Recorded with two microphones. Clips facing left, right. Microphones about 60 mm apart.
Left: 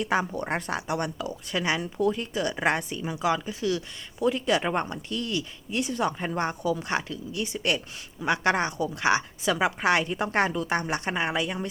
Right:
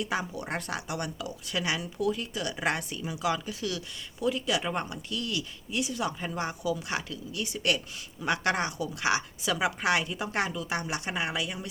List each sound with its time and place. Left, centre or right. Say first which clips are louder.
0.0 s speech: left 5 dB; left